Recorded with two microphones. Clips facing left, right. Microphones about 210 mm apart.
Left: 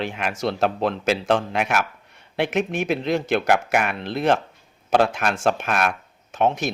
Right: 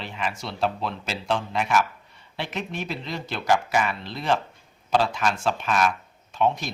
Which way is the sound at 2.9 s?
65° left (ahead or behind).